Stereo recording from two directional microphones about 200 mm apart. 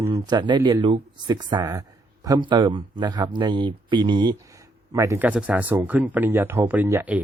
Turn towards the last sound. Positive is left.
turn(degrees=-10)  # may be behind; listen again after turning